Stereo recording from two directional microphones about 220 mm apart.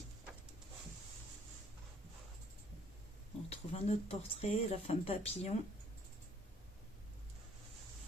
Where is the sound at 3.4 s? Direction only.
30° left (ahead or behind).